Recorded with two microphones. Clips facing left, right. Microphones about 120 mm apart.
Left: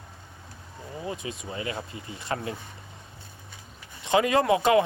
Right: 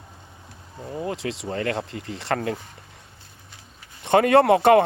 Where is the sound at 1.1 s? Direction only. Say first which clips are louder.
Right 6 dB; 80° right; by 2.6 s 60° right (ahead or behind).